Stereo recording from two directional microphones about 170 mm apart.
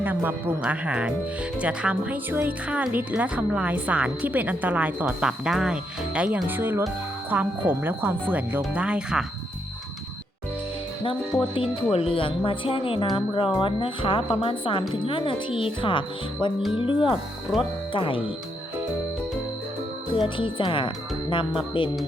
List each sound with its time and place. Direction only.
0.0 s speech: 10° right (ahead or behind)
11.5 s speech: 30° left (ahead or behind)
17.5 s speech: centre (ahead or behind)
17.9 s speech: 30° left (ahead or behind)
20.1 s speech: 30° left (ahead or behind)